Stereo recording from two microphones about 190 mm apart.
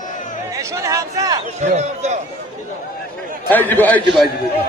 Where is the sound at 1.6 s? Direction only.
35° right (ahead or behind).